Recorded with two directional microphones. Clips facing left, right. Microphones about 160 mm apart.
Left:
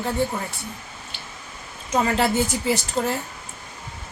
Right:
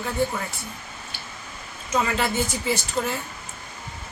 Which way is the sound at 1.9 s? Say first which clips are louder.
Left 3 dB; 35° left (ahead or behind).